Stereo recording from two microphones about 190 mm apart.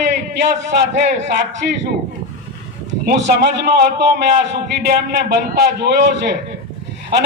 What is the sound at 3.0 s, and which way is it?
A man's voice, 55° right (ahead or behind).